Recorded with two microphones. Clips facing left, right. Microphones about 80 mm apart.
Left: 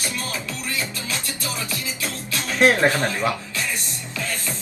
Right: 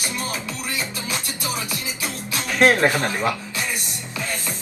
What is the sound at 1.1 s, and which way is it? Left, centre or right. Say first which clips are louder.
Music: right 2 dB; centre.